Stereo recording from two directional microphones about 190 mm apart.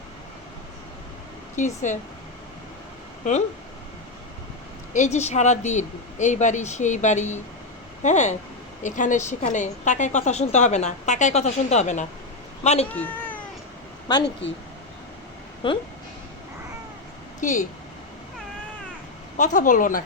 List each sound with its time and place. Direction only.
1.5 s a woman's voice: 40° left (ahead or behind)
4.9 s a woman's voice: 35° left (ahead or behind)
12.9 s cat: 10° left (ahead or behind)
14.1 s speech: 25° left (ahead or behind)
15.6 s speech: 25° left (ahead or behind)
17.4 s a woman's voice: 40° left (ahead or behind)
19.4 s speech: 40° left (ahead or behind)